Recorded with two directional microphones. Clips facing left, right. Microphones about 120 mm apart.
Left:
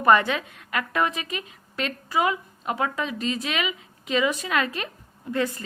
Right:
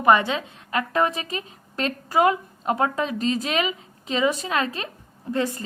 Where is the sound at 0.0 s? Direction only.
20° right (ahead or behind).